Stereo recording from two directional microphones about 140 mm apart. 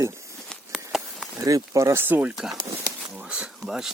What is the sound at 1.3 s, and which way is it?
Speech, 25° right (ahead or behind).